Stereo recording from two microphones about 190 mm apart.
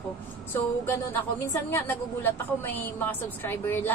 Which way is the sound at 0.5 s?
10° left (ahead or behind).